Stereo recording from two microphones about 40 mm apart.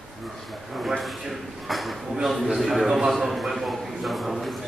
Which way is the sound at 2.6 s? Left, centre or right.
Centre.